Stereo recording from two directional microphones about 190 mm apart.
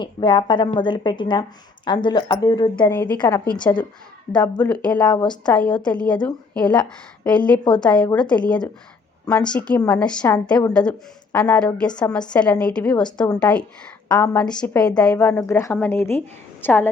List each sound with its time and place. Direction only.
0.0 s a woman's voice: 25° left (ahead or behind)
2.9 s a woman's voice: 10° left (ahead or behind)
4.6 s a woman's voice: 5° left (ahead or behind)
4.9 s a woman's voice: 20° left (ahead or behind)
5.3 s a woman's voice: 5° left (ahead or behind)